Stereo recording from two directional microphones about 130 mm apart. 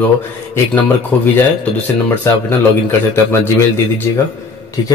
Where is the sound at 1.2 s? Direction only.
15° left (ahead or behind).